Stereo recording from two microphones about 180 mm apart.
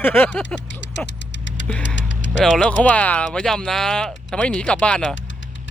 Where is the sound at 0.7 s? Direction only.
80° left.